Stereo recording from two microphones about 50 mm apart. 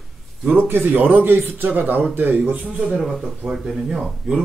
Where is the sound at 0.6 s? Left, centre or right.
Right.